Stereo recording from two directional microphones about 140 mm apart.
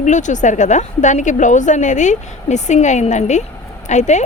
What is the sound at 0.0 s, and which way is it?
Speech, 60° left (ahead or behind).